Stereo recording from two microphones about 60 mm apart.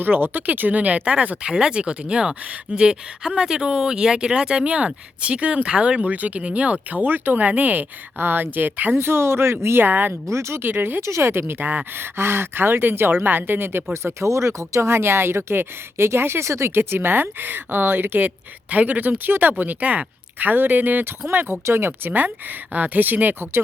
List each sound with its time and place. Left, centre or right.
0.0 s speech: right
9.0 s speech: right
10.2 s speech: right
10.7 s speech: right
11.0 s speech: right
13.9 s speech: right
16.7 s speech: right